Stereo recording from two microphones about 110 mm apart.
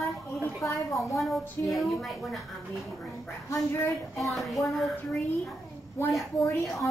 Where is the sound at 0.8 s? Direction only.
30° left (ahead or behind).